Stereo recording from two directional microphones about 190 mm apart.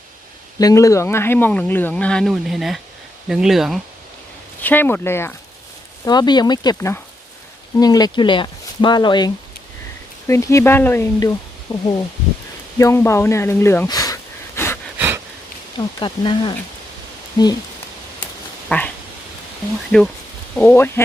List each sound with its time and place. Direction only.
0.6 s speech: 15° left (ahead or behind); by 3.8 s centre (ahead or behind)
4.6 s speech: 10° left (ahead or behind)
14.9 s a sound: 10° right (ahead or behind)
16.0 s speech: 25° left (ahead or behind)
18.7 s speech: 10° left (ahead or behind)
19.9 s speech: 5° left (ahead or behind)